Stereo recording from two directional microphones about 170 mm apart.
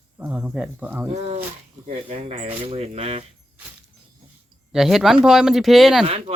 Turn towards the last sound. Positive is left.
turn(degrees=-35)  # may be behind; listen again after turning